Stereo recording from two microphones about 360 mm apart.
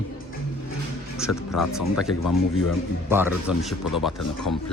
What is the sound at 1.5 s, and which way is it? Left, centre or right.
Speech, centre.